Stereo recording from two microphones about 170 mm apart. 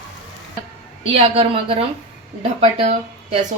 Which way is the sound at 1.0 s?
35° right (ahead or behind).